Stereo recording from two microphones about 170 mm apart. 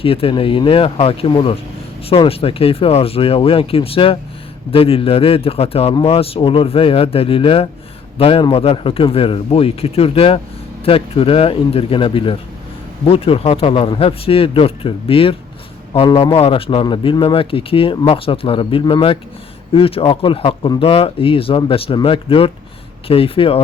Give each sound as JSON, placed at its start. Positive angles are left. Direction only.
{"t": 0.0, "sound": "a man's voice", "side_deg": 35}